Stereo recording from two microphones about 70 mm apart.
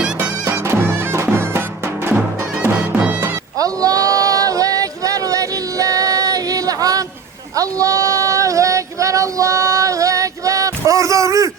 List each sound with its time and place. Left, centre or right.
0.2 s music: right
3.6 s female singing: right